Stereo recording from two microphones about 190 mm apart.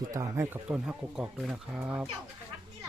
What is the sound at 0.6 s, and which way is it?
Speech, 5° right (ahead or behind).